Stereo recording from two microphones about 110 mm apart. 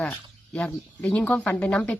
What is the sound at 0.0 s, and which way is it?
Speech, 10° left (ahead or behind).